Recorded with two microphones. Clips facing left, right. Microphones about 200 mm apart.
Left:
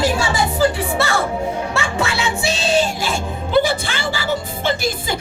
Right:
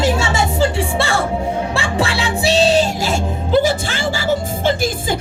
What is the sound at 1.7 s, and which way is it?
Music, 30° right (ahead or behind).